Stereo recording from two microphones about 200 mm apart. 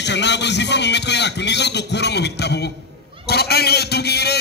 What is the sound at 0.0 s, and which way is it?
A man's voice, 60° left (ahead or behind).